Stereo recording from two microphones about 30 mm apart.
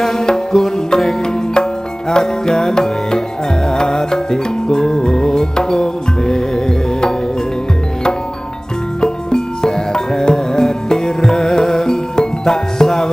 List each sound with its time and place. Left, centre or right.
0.0 s music: centre
9.0 s music: left